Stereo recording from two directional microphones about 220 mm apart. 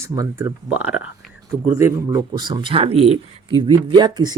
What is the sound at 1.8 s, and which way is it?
Speech, 15° right (ahead or behind).